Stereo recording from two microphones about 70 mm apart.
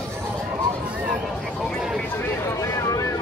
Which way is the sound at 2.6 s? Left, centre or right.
Left.